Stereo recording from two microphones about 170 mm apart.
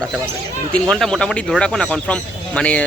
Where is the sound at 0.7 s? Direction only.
5° left (ahead or behind).